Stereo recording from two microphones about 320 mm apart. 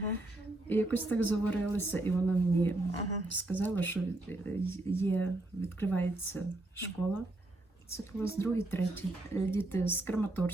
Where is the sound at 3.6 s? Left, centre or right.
Centre.